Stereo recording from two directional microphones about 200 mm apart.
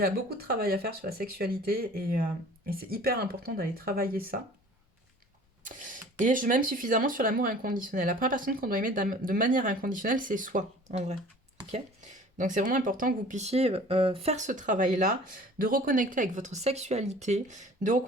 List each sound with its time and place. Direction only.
0.0 s speech: 50° right (ahead or behind)
5.6 s speech: 40° right (ahead or behind)
12.4 s speech: 40° right (ahead or behind)